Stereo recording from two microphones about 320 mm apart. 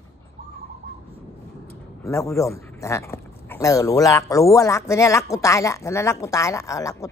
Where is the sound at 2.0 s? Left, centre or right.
Centre.